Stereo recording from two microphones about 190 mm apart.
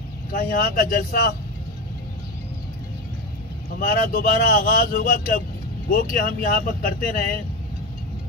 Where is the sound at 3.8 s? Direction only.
50° left (ahead or behind).